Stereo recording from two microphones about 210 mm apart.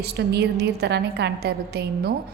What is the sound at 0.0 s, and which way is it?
A woman's voice, 50° right (ahead or behind).